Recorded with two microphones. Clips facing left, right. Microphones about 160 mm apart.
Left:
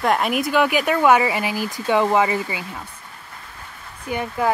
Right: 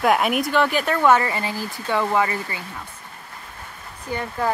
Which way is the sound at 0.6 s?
10° left (ahead or behind).